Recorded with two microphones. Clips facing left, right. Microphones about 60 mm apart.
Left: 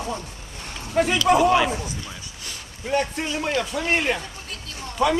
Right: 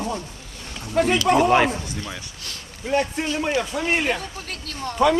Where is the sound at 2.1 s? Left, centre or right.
Right.